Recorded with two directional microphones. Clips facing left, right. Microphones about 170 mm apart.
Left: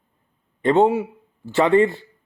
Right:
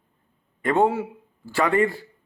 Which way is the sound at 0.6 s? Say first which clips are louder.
Left 4 dB; 25° left (ahead or behind).